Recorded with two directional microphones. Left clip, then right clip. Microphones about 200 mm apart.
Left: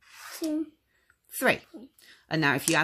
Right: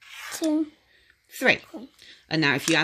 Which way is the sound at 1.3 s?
Centre (ahead or behind).